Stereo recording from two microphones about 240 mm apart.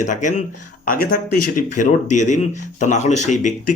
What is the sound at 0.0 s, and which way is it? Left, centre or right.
Speech, left.